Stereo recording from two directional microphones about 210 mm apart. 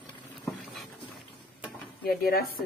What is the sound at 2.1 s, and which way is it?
Speech, 45° left (ahead or behind).